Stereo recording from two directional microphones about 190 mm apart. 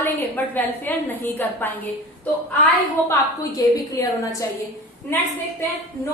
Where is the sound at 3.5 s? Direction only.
20° left (ahead or behind).